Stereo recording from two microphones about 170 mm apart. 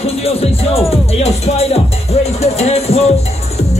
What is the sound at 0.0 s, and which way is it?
Music, 35° left (ahead or behind).